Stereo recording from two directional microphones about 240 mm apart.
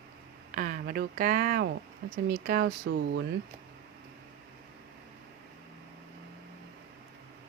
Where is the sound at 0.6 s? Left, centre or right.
Right.